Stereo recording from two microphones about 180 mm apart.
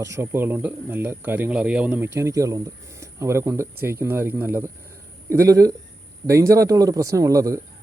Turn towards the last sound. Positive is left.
turn(degrees=-20)  # may be behind; listen again after turning